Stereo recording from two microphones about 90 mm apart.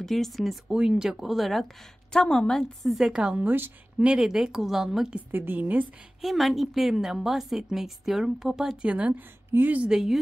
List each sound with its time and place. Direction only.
0.0 s a woman's voice: 5° left (ahead or behind)
3.4 s a woman's voice: 25° right (ahead or behind)
4.0 s a woman's voice: 10° right (ahead or behind)
5.3 s a woman's voice: 20° right (ahead or behind)
6.2 s a woman's voice: centre (ahead or behind)
8.8 s a woman's voice: 15° right (ahead or behind)
9.8 s a woman's voice: 5° right (ahead or behind)